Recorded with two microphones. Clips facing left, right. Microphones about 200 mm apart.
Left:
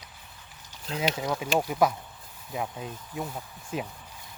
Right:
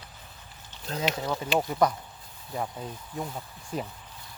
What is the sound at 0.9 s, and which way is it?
Speech, 15° left (ahead or behind).